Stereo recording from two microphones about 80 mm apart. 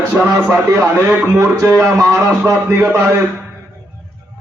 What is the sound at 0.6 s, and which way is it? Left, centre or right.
A man's voice, right.